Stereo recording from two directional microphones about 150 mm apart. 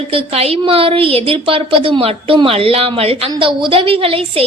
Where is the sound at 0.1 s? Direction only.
40° right (ahead or behind).